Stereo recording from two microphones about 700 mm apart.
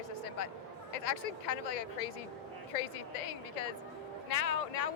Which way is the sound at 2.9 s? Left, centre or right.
Left.